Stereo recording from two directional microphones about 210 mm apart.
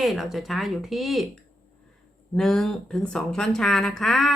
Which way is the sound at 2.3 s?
Centre (ahead or behind).